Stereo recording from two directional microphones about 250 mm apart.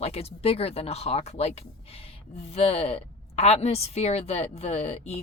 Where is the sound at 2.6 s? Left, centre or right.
Left.